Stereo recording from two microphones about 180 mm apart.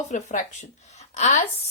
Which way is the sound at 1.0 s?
40° left (ahead or behind).